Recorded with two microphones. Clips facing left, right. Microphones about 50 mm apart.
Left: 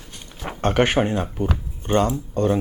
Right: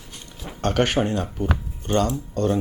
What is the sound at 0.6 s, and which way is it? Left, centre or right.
Speech, left.